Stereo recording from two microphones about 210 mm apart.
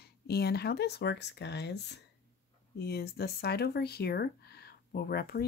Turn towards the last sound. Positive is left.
turn(degrees=50)  # may be behind; listen again after turning